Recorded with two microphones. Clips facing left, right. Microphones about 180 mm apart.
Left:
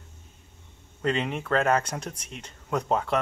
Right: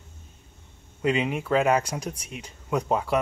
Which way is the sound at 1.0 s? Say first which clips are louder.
Right 3 dB; 10° right (ahead or behind).